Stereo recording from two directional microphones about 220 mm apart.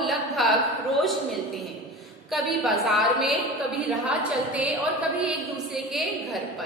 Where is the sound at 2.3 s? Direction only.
Centre (ahead or behind).